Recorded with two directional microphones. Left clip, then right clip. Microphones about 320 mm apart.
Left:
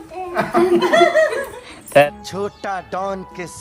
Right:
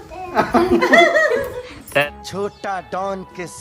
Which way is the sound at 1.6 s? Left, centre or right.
Centre.